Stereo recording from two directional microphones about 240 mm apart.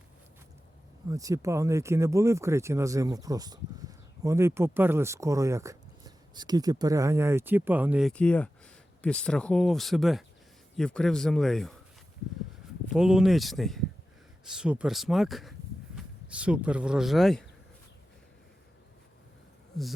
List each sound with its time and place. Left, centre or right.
1.1 s speech: centre
12.9 s speech: centre